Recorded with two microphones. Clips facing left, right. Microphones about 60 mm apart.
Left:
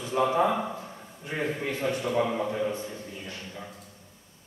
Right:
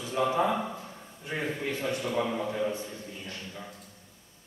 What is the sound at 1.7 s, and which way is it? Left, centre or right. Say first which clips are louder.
Speech: left 2 dB; left.